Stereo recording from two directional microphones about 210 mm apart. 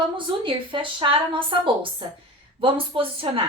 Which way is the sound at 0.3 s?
25° right (ahead or behind).